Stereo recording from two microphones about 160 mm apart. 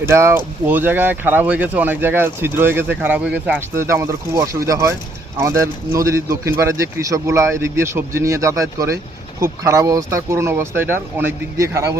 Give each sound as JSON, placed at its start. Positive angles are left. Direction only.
{"t": 0.1, "sound": "speech", "side_deg": -15}